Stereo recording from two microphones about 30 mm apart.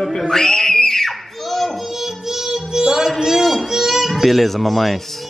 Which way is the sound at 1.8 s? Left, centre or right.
Centre.